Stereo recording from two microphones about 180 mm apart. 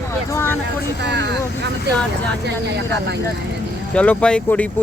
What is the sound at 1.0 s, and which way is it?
Speech, 70° right (ahead or behind).